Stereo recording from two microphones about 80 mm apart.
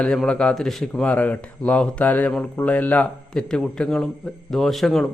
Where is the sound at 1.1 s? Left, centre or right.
Centre.